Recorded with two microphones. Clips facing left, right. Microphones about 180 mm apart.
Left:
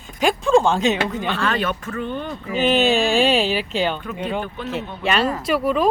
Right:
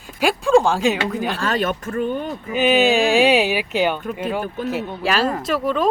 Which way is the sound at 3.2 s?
10° right (ahead or behind).